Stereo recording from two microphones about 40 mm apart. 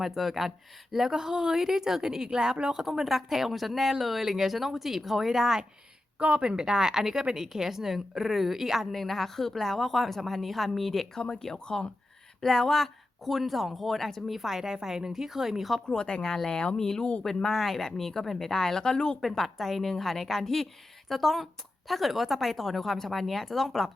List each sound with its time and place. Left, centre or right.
0.0 s speech: centre
2.8 s speech: centre
6.1 s speech: right; by 8.9 s centre
8.9 s speech: centre
11.2 s speech: centre
15.9 s speech: left
17.0 s speech: left
17.2 s speech: centre
19.3 s speech: centre